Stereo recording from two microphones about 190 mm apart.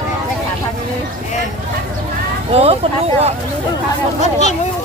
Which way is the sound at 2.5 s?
30° right (ahead or behind).